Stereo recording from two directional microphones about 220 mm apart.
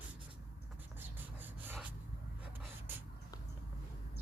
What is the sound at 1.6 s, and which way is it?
Snort, 10° right (ahead or behind).